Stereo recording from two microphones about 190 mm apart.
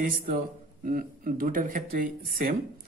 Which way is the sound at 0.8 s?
45° right (ahead or behind).